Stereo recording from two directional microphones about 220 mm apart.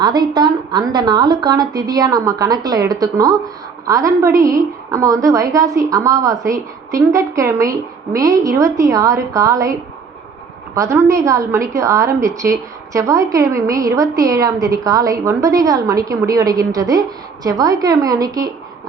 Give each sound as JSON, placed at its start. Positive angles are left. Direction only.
{"t": 0.0, "sound": "a woman's voice", "side_deg": -20}
{"t": 10.8, "sound": "a woman's voice", "side_deg": -15}